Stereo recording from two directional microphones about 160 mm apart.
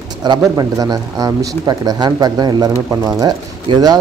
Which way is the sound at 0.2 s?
25° right (ahead or behind).